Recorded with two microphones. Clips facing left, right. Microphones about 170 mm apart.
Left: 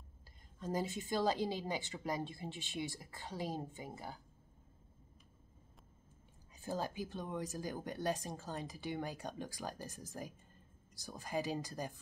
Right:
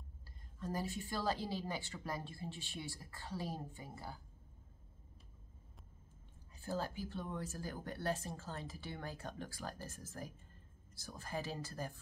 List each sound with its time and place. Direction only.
0.6 s speech: 20° left (ahead or behind)
6.6 s speech: 15° left (ahead or behind)